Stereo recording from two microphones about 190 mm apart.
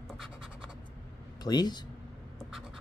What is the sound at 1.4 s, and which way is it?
Speech, 20° left (ahead or behind).